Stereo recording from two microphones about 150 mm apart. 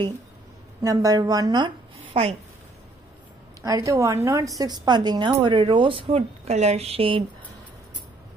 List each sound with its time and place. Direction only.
0.8 s a woman's voice: 25° right (ahead or behind)
3.6 s a woman's voice: 20° right (ahead or behind); by 7.2 s 40° right (ahead or behind)